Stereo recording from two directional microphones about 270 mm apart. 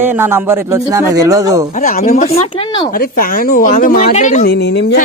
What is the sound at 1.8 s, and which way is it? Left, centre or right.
Speech, left.